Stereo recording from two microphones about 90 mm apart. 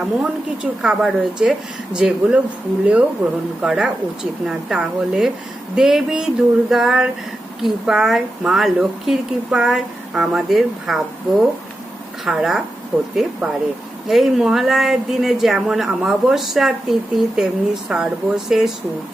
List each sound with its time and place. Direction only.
0.0 s a woman's voice: 10° right (ahead or behind)